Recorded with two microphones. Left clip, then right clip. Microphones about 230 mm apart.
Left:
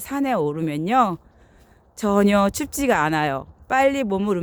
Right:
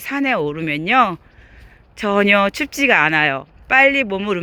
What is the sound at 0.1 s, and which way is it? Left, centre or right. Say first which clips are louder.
A man's voice: right 3 dB; centre.